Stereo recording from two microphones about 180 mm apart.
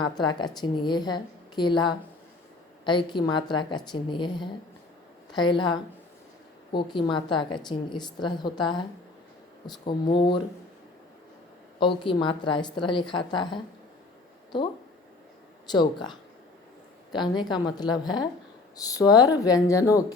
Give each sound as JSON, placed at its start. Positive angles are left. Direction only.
{"t": 0.0, "sound": "a woman's voice", "side_deg": 25}
{"t": 9.8, "sound": "a woman's voice", "side_deg": 30}
{"t": 11.8, "sound": "a woman's voice", "side_deg": 25}
{"t": 15.7, "sound": "a woman's voice", "side_deg": 25}